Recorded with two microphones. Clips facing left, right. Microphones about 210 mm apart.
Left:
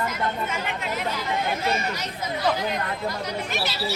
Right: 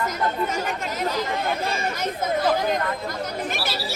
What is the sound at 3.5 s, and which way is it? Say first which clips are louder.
Speech: left 1 dB; 50° right (ahead or behind).